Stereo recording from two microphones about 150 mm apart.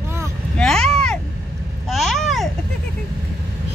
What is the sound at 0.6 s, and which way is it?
Vehicle, 5° left (ahead or behind).